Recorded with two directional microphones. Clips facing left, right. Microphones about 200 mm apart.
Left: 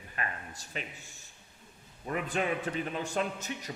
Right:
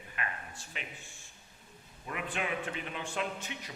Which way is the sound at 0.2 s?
40° left (ahead or behind).